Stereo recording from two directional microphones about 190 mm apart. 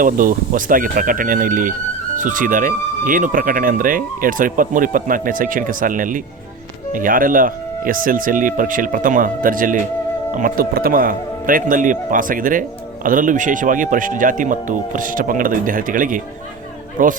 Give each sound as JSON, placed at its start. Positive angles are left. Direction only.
{"t": 0.0, "sound": "speech", "side_deg": -45}